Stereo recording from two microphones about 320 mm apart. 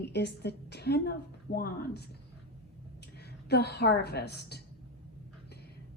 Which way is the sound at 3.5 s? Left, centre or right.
Left.